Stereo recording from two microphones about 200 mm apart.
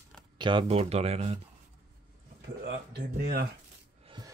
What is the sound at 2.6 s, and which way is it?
Speech, 55° right (ahead or behind).